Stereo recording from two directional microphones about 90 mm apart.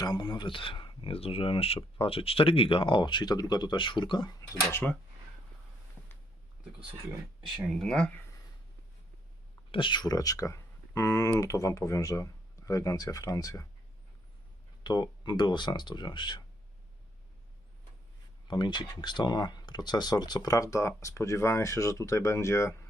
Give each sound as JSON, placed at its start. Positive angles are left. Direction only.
{"t": 0.0, "sound": "speech", "side_deg": 55}
{"t": 4.7, "sound": "speech", "side_deg": 20}
{"t": 7.7, "sound": "speech", "side_deg": 5}
{"t": 9.7, "sound": "speech", "side_deg": 60}
{"t": 14.8, "sound": "speech", "side_deg": 55}
{"t": 18.4, "sound": "speech", "side_deg": 55}